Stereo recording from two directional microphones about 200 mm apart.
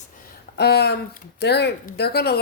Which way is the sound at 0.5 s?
55° left (ahead or behind).